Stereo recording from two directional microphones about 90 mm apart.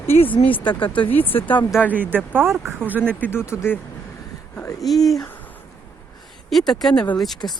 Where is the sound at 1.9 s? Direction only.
20° right (ahead or behind).